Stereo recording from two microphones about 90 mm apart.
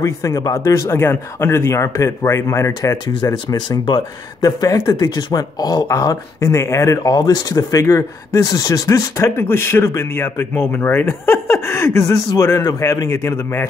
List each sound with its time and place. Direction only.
0.0 s speech: 35° left (ahead or behind)
5.9 s speech: 35° left (ahead or behind)
7.0 s speech: 45° left (ahead or behind)
8.5 s speech: 45° left (ahead or behind)
9.4 s speech: 25° left (ahead or behind)